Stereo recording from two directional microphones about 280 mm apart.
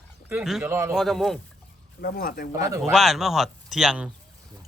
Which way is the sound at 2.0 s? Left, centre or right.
Left.